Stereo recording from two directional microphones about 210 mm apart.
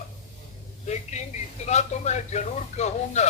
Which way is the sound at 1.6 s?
35° left (ahead or behind).